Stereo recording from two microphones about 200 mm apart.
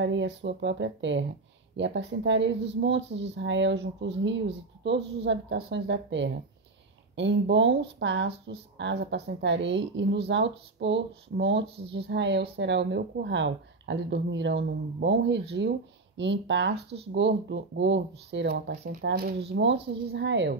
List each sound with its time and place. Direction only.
0.0 s speech: 65° right (ahead or behind)
18.9 s speech: 50° right (ahead or behind)